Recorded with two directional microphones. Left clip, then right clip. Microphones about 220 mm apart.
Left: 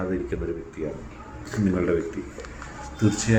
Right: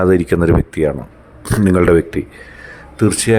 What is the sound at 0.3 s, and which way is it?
Speech, 55° right (ahead or behind).